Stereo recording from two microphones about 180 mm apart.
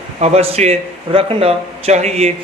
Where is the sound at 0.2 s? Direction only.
35° right (ahead or behind).